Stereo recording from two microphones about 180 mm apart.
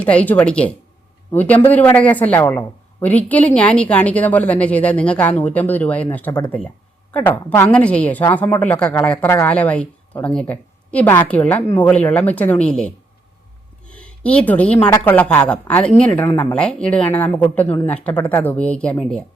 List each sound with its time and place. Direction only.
0.0 s a woman's voice: 5° left (ahead or behind)
13.9 s a woman's voice: 5° left (ahead or behind)